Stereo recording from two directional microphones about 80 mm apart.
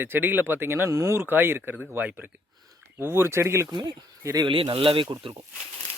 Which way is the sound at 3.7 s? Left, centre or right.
Right.